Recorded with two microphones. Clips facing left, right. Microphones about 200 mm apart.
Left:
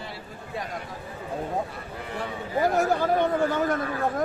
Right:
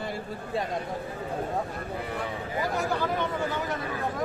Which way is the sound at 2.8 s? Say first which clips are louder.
Left 5 dB; 50° left (ahead or behind).